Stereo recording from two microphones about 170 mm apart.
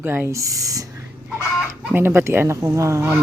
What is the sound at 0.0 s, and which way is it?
Speech, 15° right (ahead or behind).